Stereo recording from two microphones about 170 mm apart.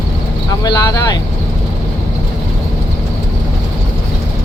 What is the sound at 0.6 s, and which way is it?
Speech, 25° left (ahead or behind).